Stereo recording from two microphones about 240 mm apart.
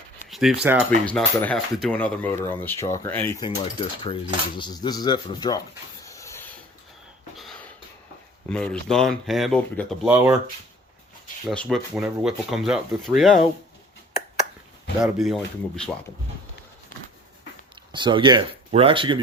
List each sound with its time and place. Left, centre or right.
0.3 s a sound: centre
0.6 s speech: centre
0.9 s speech: centre
3.4 s speech: left
6.1 s a sound: centre
7.3 s a sound: centre
8.4 s speech: centre
10.1 s speech: centre
11.4 s speech: centre
15.0 s speech: centre
17.9 s speech: centre